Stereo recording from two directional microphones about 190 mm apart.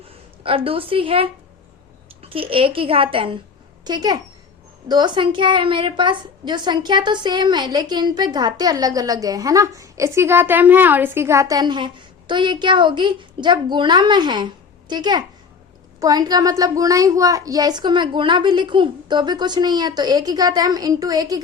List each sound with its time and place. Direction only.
0.4 s a woman's voice: 30° right (ahead or behind)